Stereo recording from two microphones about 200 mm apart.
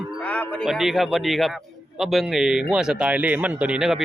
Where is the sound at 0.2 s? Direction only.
5° left (ahead or behind).